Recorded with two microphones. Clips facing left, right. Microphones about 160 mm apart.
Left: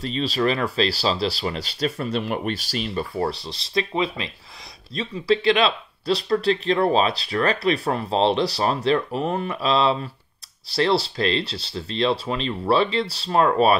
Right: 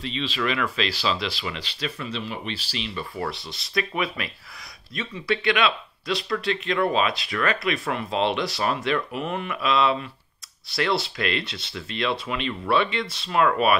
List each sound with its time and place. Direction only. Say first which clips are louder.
0.0 s speech: left 5 dB; 40° left (ahead or behind)